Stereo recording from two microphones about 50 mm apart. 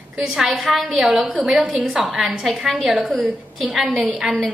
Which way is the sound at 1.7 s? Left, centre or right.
Centre.